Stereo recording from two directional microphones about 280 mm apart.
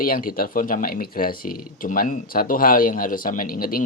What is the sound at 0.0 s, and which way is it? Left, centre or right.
Speech, left.